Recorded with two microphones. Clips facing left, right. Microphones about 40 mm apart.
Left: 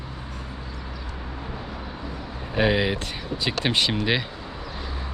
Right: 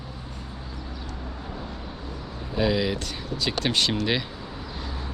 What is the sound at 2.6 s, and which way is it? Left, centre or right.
Speech, left.